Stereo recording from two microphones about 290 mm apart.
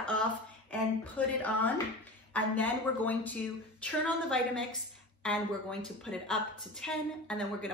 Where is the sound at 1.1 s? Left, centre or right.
Centre.